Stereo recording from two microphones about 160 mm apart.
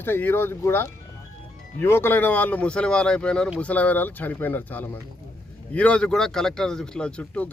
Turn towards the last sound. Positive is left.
turn(degrees=5)  # may be behind; listen again after turning